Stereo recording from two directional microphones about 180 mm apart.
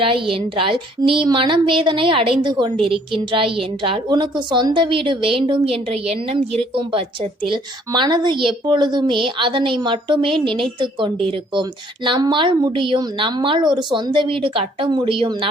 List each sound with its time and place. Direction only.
0.0 s a woman's voice: 30° right (ahead or behind)